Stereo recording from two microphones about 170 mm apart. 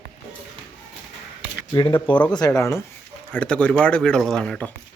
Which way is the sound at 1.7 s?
30° left (ahead or behind).